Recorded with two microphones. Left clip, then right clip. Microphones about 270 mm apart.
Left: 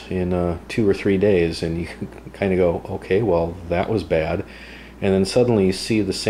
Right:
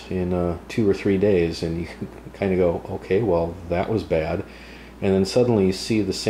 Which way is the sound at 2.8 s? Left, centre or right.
Right.